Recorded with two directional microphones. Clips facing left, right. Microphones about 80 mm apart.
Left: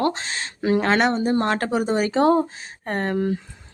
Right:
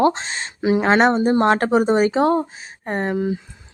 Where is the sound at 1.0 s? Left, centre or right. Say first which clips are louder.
Right 5 dB; right.